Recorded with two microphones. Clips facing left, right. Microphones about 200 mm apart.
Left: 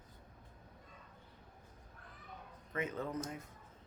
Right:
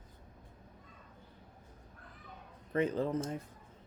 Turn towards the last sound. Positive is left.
turn(degrees=-30)  # may be behind; listen again after turning